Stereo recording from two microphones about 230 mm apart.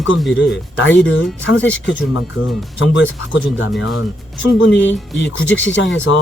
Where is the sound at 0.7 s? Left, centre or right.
Left.